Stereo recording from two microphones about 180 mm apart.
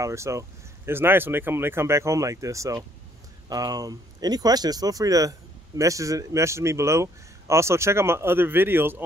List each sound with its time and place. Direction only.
0.0 s a man's voice: 15° right (ahead or behind)